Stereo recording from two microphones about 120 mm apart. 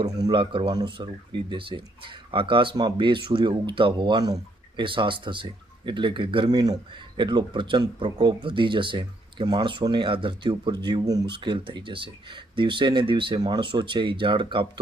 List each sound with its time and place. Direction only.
0.0 s speech: 35° right (ahead or behind)